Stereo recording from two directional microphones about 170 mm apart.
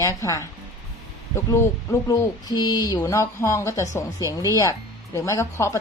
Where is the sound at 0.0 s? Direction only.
20° left (ahead or behind).